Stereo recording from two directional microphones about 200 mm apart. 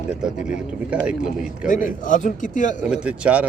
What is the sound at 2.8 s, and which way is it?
Speech, 5° right (ahead or behind).